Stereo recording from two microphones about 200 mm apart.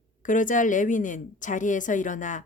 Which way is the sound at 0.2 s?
40° left (ahead or behind).